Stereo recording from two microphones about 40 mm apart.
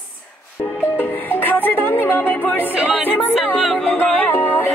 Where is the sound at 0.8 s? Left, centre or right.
Left.